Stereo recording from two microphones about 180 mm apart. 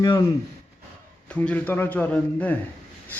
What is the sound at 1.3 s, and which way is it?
A man's voice, 10° left (ahead or behind).